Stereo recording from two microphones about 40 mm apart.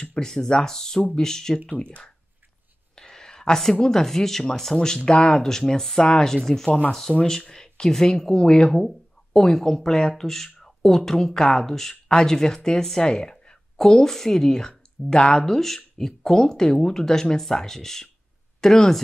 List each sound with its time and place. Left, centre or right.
0.0 s speech: left
1.7 s speech: left
3.0 s a sound: centre
3.7 s speech: centre